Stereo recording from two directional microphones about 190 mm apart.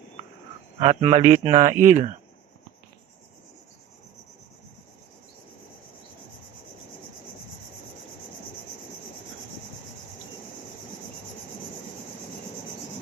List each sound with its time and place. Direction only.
0.8 s speech: 35° right (ahead or behind)